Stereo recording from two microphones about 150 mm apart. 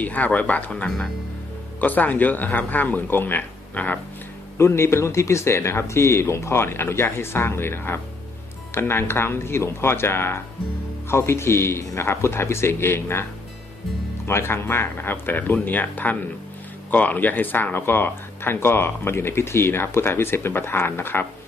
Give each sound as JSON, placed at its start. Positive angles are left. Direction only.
{"t": 0.0, "sound": "speech", "side_deg": 10}
{"t": 14.2, "sound": "speech", "side_deg": 15}